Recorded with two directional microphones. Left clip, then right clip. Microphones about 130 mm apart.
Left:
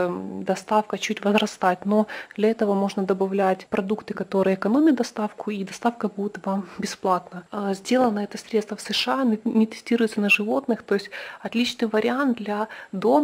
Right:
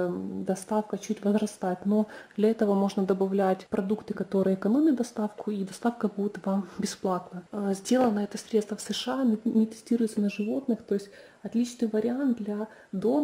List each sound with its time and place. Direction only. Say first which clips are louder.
0.0 s speech: left 5 dB; 5° left (ahead or behind)
12.5 s speech: left 8 dB; 5° left (ahead or behind)